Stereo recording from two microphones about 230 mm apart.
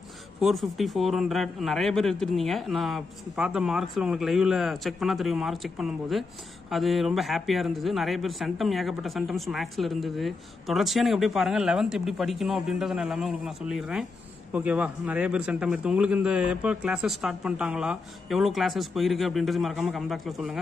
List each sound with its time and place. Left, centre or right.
0.4 s a man's voice: centre